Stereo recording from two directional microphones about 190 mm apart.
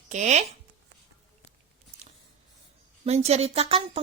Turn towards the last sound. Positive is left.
turn(degrees=-35)  # may be behind; listen again after turning